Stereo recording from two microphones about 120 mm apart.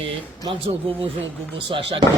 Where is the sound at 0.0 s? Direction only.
45° right (ahead or behind).